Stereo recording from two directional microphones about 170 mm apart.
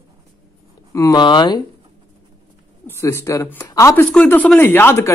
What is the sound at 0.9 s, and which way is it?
Speech, 20° left (ahead or behind).